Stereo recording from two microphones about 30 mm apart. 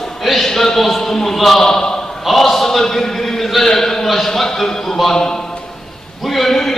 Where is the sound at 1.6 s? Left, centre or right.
Left.